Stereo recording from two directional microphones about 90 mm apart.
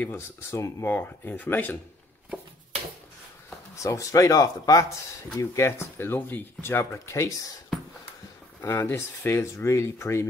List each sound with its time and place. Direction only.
0.0 s speech: 30° left (ahead or behind)
0.9 s speech: 20° left (ahead or behind)
3.7 s speech: 35° left (ahead or behind)
5.4 s speech: 30° left (ahead or behind)
8.5 s speech: 25° left (ahead or behind)